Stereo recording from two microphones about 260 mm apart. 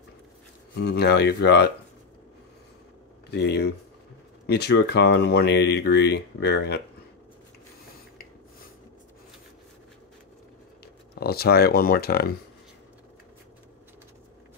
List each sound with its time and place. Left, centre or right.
0.7 s speech: left
3.3 s speech: left
11.1 s speech: left